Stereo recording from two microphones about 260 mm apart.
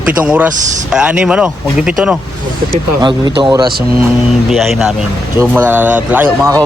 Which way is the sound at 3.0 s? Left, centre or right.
Centre.